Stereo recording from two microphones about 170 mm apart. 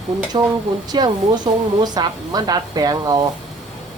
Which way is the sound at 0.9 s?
25° right (ahead or behind).